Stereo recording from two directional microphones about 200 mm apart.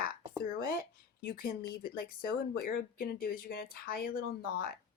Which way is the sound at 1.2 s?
50° left (ahead or behind).